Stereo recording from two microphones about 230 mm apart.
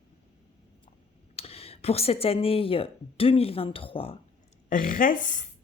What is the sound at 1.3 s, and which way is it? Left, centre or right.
Speech, left.